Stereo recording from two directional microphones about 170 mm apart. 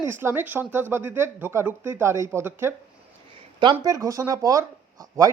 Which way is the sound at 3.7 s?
20° right (ahead or behind).